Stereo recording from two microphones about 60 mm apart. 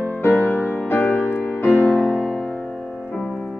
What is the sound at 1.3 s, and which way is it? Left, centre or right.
Music, left.